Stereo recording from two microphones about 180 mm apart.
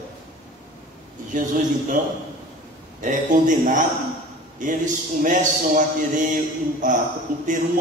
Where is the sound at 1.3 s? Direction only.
45° right (ahead or behind).